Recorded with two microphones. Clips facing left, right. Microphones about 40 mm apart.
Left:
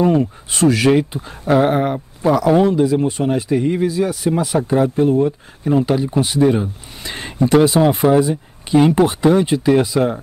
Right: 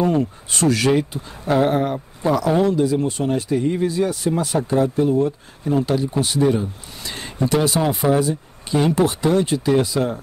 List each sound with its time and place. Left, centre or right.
0.0 s speech: centre
3.8 s speech: centre
4.3 s speech: centre
6.5 s speech: left